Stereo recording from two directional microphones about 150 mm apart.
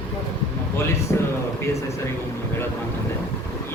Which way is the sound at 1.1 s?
15° left (ahead or behind).